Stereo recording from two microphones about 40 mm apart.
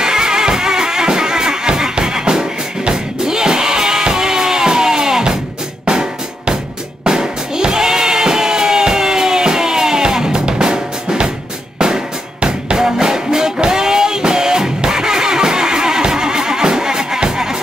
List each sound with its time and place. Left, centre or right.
0.0 s music: centre
5.9 s drum: centre
7.1 s music: centre